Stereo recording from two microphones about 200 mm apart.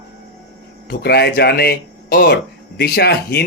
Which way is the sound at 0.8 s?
50° left (ahead or behind).